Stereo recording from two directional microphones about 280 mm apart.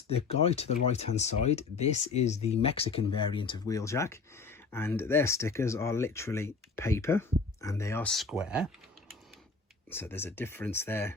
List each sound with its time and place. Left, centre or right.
0.1 s speech: left; by 8.7 s centre
9.9 s speech: centre